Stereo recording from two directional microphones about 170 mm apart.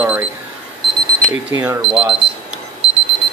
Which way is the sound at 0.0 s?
10° right (ahead or behind).